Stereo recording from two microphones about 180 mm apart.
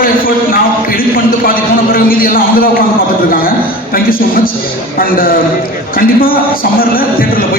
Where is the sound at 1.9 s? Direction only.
55° left (ahead or behind).